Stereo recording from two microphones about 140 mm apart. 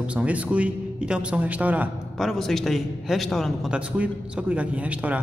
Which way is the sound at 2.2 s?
Centre (ahead or behind).